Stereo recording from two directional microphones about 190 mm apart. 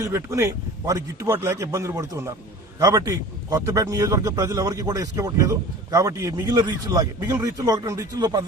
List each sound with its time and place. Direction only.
0.0 s a man's voice: 15° right (ahead or behind)